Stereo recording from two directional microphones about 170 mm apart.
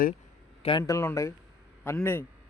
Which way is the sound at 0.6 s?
25° left (ahead or behind).